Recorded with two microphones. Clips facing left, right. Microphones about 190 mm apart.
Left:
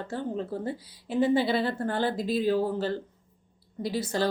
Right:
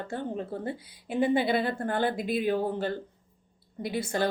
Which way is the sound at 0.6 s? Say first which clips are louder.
Left 1 dB; 55° right (ahead or behind).